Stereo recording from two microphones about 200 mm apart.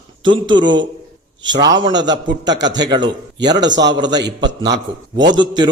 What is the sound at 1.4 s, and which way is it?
A man's voice, 20° right (ahead or behind).